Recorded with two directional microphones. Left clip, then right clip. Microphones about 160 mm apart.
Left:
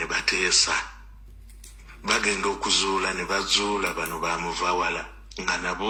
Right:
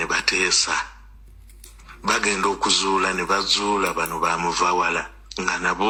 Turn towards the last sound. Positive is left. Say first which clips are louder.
# right 5 dB
turn(degrees=-35)  # may be behind; listen again after turning